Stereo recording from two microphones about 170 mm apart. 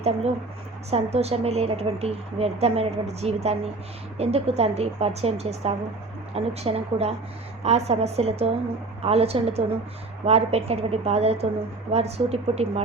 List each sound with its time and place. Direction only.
0.9 s a woman's voice: 40° right (ahead or behind)